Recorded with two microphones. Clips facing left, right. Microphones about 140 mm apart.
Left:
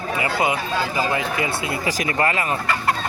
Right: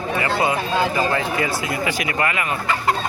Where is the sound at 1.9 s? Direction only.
35° left (ahead or behind).